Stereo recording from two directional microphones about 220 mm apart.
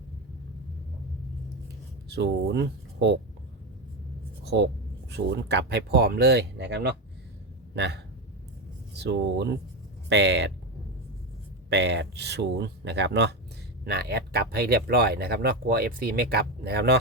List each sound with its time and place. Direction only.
2.0 s speech: 50° right (ahead or behind)
4.4 s speech: 55° right (ahead or behind)
11.7 s speech: 50° right (ahead or behind)